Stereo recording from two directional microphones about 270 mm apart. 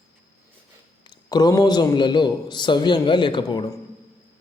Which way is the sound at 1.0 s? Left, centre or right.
Centre.